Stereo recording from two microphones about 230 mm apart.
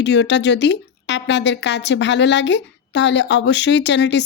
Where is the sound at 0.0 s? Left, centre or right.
Left.